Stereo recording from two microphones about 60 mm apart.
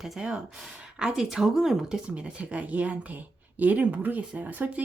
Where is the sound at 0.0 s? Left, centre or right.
Centre.